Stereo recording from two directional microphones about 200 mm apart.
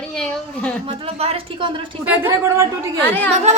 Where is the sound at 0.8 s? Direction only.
30° right (ahead or behind).